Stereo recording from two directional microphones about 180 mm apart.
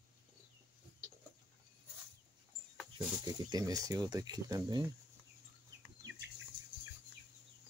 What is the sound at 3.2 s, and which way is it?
Speech, 20° right (ahead or behind).